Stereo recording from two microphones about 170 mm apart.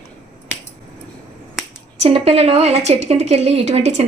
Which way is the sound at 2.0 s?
35° right (ahead or behind).